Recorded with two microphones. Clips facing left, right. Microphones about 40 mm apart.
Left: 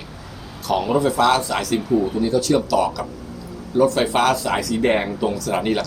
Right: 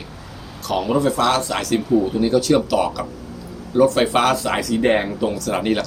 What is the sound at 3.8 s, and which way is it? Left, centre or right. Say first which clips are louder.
A man's voice: right 1 dB; centre.